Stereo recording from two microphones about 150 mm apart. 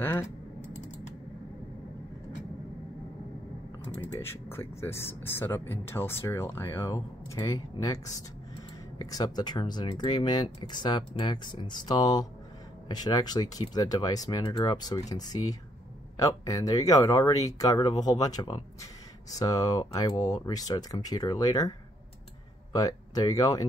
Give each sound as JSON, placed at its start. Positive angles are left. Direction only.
{"t": 0.0, "sound": "speech", "side_deg": 15}
{"t": 4.1, "sound": "speech", "side_deg": 15}
{"t": 22.8, "sound": "speech", "side_deg": 25}